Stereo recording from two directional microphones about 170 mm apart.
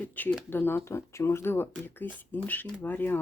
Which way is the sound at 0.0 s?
10° left (ahead or behind).